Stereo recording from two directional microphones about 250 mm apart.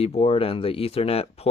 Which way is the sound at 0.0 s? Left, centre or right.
Left.